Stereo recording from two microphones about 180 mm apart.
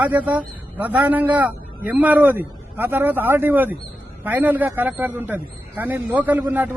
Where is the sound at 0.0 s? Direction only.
10° right (ahead or behind).